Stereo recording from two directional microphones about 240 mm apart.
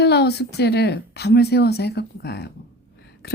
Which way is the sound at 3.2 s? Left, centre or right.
Left.